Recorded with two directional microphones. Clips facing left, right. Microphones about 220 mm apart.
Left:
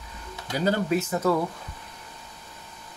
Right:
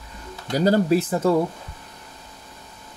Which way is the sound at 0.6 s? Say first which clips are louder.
Right 6 dB; 35° right (ahead or behind).